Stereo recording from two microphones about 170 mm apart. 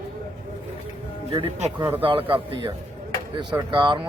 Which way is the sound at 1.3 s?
30° right (ahead or behind).